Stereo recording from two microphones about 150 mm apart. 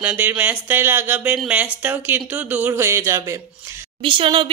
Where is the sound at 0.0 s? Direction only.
10° right (ahead or behind).